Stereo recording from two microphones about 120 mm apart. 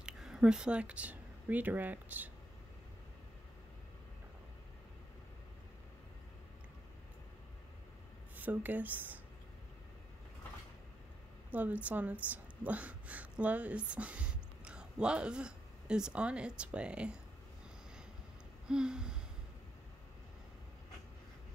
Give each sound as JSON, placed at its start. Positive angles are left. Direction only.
{"t": 0.0, "sound": "speech", "side_deg": -5}
{"t": 8.4, "sound": "speech", "side_deg": -15}
{"t": 11.5, "sound": "a woman's voice", "side_deg": -10}
{"t": 18.7, "sound": "speech", "side_deg": -5}